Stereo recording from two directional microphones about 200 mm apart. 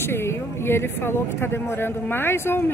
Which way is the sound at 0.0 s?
10° left (ahead or behind).